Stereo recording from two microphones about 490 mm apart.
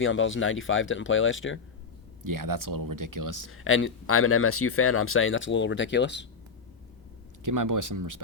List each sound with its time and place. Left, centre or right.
0.0 s speech: left
2.2 s speech: right
3.5 s speech: left
7.4 s speech: right